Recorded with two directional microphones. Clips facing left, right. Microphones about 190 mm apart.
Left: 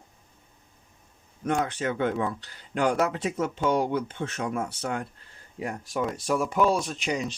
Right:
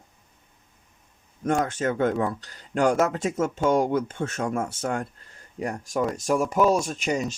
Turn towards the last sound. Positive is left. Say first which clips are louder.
# right 3 dB
turn(degrees=-45)  # may be behind; listen again after turning